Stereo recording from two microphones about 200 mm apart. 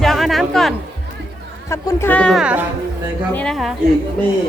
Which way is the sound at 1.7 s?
15° left (ahead or behind).